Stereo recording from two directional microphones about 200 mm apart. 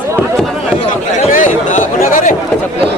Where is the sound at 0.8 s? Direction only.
40° left (ahead or behind).